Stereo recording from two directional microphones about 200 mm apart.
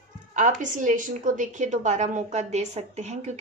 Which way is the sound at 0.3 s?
40° right (ahead or behind).